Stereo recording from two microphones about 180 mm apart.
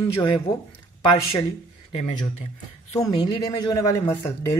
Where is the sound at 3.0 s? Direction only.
25° left (ahead or behind).